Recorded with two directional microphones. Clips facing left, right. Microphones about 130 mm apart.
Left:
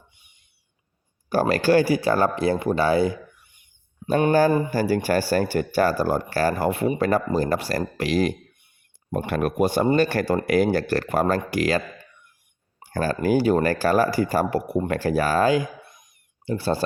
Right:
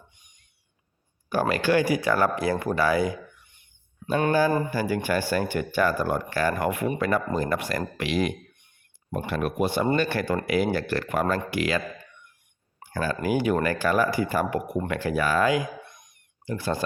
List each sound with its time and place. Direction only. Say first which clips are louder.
0.2 s owl: right 1 dB; 10° left (ahead or behind)
1.3 s speech: left 4 dB; 35° left (ahead or behind)
3.4 s a sound: left 1 dB; 10° left (ahead or behind)
4.3 s speech: left 3 dB; 45° left (ahead or behind)
9.1 s speech: left 4 dB; 50° left (ahead or behind)
12.9 s speech: left 4 dB; 40° left (ahead or behind)
15.8 s a sound: right 2 dB; 5° left (ahead or behind)
16.5 s speech: left 4 dB; 30° left (ahead or behind)